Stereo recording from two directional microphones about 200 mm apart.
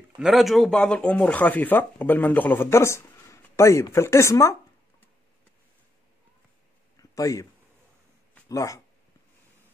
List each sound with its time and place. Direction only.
0.2 s speech: centre (ahead or behind)
7.0 s a sound: 15° left (ahead or behind)
8.5 s speech: 15° left (ahead or behind)